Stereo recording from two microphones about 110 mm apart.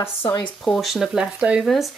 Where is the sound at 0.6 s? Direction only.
Centre (ahead or behind).